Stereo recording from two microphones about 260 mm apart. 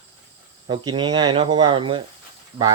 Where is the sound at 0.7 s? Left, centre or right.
Centre.